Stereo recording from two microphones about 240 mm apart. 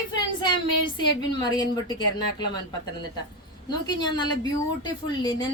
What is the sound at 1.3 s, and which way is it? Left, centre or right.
A woman's voice, centre.